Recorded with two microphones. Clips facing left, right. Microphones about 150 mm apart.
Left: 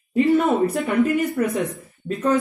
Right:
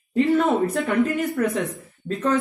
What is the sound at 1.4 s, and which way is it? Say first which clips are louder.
Speech: left 1 dB; 15° left (ahead or behind).